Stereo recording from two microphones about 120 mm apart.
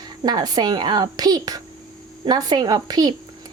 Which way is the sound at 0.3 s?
35° right (ahead or behind).